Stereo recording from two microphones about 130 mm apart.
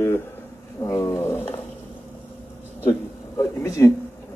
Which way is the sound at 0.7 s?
25° left (ahead or behind).